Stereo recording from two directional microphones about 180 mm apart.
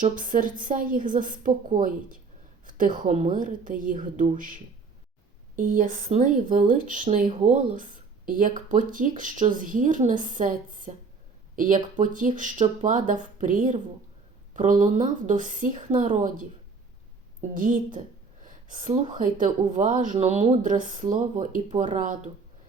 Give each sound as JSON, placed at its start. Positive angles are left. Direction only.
{"t": 0.0, "sound": "speech", "side_deg": -45}
{"t": 5.5, "sound": "speech", "side_deg": -45}
{"t": 17.5, "sound": "speech", "side_deg": -45}
{"t": 18.4, "sound": "a sound", "side_deg": -45}
{"t": 19.1, "sound": "speech", "side_deg": -45}
{"t": 20.6, "sound": "speech", "side_deg": -45}